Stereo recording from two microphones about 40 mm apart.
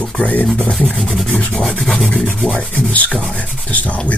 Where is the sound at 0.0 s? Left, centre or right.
Left.